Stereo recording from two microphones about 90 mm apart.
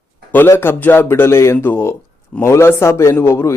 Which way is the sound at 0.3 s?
20° left (ahead or behind).